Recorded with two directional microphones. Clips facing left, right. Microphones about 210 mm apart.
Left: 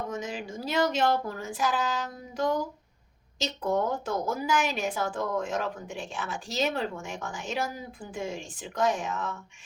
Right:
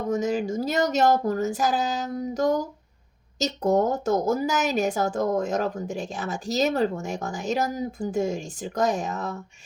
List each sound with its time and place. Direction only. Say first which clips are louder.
0.1 s a woman's voice: right 10 dB; 45° right (ahead or behind)